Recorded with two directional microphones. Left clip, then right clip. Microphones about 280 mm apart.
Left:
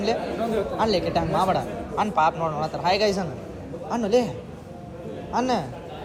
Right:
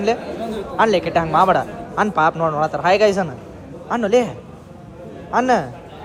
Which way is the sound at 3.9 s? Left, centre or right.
Right.